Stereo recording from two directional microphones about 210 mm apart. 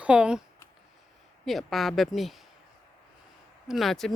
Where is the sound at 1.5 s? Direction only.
Centre (ahead or behind).